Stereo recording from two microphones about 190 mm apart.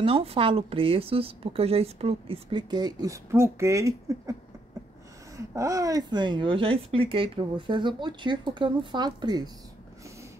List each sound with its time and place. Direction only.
0.0 s speech: 30° right (ahead or behind)
5.5 s speech: 15° right (ahead or behind)